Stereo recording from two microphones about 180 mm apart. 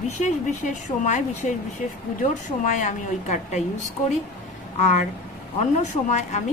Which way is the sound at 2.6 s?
45° left (ahead or behind).